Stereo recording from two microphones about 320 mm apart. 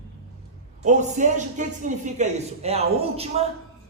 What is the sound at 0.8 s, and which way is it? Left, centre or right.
A woman's voice, right.